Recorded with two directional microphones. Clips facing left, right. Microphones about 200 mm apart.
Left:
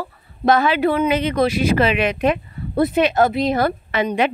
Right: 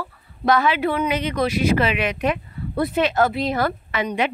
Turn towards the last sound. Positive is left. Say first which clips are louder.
# left 4 dB
turn(degrees=30)  # may be behind; listen again after turning